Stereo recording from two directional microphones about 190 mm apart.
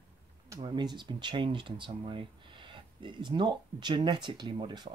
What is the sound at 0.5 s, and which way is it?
Speech, 20° right (ahead or behind).